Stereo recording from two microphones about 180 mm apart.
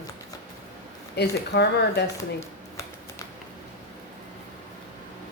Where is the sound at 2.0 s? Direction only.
15° left (ahead or behind).